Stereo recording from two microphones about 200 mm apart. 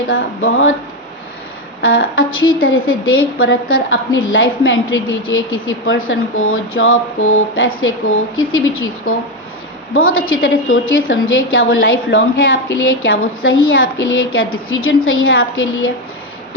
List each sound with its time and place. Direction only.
0.1 s a woman's voice: 80° left
1.8 s a woman's voice: 85° left